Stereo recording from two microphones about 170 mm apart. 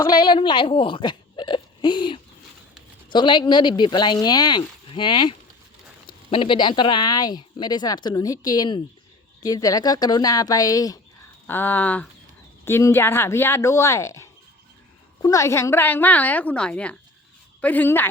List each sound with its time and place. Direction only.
0.0 s a woman's voice: 25° left (ahead or behind)